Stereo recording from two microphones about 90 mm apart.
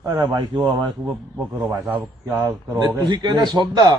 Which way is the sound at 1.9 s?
20° right (ahead or behind).